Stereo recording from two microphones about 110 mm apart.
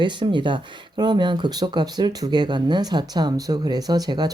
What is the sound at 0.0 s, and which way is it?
Speech, 45° right (ahead or behind).